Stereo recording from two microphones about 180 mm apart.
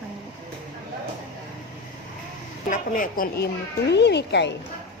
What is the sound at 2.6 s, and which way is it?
Speech, 50° left (ahead or behind).